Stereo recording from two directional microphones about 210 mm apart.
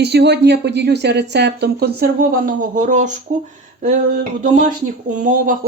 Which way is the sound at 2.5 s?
40° right (ahead or behind).